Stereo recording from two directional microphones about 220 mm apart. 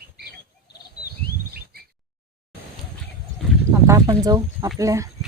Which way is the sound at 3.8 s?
15° right (ahead or behind).